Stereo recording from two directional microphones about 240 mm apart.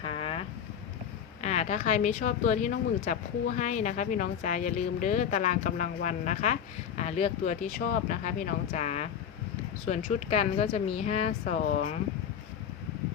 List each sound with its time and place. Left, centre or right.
0.0 s boat: left
1.4 s speech: left